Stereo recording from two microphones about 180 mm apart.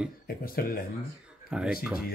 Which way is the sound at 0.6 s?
55° left (ahead or behind).